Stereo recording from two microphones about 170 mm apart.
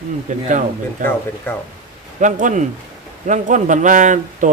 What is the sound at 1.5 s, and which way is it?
Speech, 10° left (ahead or behind).